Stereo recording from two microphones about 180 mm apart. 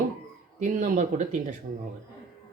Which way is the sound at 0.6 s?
45° right (ahead or behind).